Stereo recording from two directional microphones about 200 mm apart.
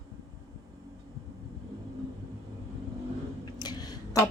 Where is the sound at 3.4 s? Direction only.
20° left (ahead or behind).